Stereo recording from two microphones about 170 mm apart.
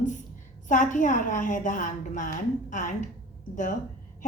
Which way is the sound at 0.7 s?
50° left (ahead or behind).